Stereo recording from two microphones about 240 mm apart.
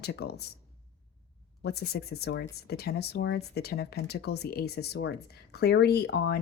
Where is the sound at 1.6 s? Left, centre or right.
Left.